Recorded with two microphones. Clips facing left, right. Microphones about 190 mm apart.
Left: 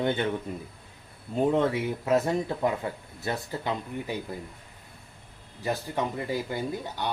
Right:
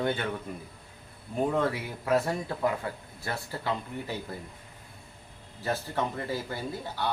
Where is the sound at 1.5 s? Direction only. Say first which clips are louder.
Left 4 dB; 20° left (ahead or behind).